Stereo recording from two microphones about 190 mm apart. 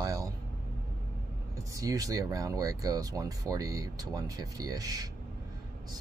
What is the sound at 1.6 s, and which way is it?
Speech, 20° right (ahead or behind).